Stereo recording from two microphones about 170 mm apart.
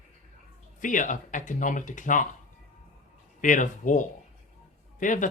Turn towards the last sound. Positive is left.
turn(degrees=50)  # may be behind; listen again after turning